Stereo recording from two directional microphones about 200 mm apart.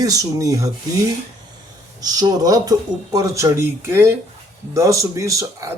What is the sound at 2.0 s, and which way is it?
Speech, 20° right (ahead or behind).